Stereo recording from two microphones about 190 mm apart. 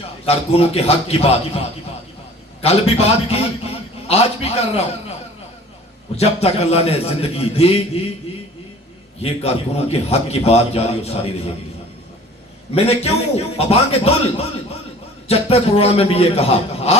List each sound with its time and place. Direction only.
0.3 s a man's voice: 30° left (ahead or behind)
6.1 s a man's voice: 30° left (ahead or behind)
9.2 s a man's voice: 30° left (ahead or behind)
12.7 s a man's voice: 30° left (ahead or behind)